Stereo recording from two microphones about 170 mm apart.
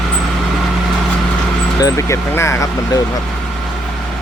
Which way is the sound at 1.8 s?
15° left (ahead or behind).